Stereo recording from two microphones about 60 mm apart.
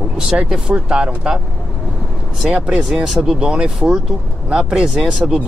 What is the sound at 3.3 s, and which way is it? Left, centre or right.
Speech, centre.